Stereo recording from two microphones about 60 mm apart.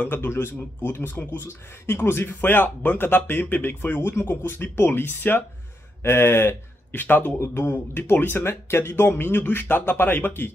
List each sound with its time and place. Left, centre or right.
0.0 s speech: left